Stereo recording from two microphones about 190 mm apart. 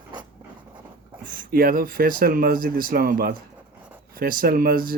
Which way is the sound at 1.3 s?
50° right (ahead or behind).